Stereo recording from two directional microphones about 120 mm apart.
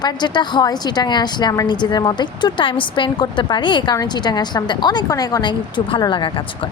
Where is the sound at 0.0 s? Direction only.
35° left (ahead or behind).